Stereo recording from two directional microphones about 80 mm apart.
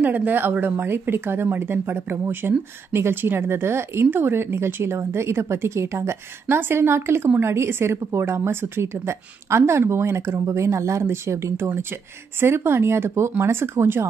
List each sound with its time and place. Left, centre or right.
0.0 s a woman's voice: right